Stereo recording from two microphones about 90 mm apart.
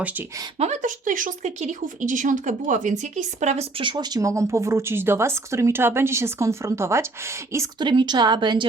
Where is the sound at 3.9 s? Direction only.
45° right (ahead or behind).